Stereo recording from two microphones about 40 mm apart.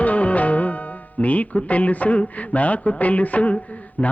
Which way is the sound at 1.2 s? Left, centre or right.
Left.